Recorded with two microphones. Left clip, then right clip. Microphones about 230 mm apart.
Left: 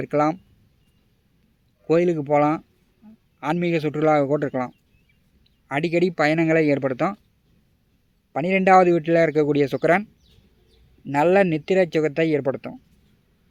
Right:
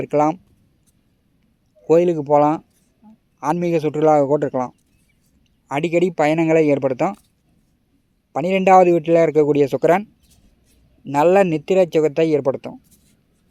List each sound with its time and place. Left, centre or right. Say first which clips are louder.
0.0 s speech: right 4 dB; centre
1.9 s speech: right 5 dB; centre
8.3 s speech: right 3 dB; centre